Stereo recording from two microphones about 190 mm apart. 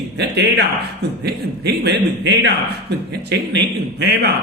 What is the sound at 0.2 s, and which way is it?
A man's voice, 60° right (ahead or behind).